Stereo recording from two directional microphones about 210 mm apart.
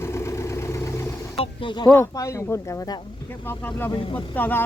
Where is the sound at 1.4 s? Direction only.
20° left (ahead or behind).